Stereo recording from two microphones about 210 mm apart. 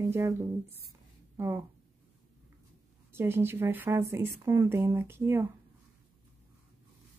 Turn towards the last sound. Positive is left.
turn(degrees=-10)  # may be behind; listen again after turning